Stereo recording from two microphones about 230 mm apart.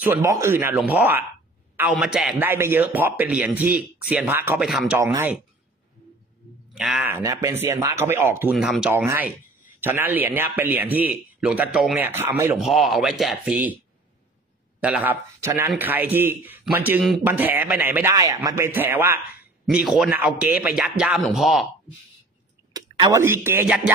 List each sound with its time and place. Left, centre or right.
0.0 s speech: centre
6.7 s speech: centre
14.8 s speech: centre
22.7 s clicking: centre
23.2 s speech: centre